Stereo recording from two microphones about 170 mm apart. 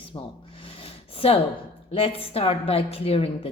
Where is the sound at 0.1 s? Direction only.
30° left (ahead or behind).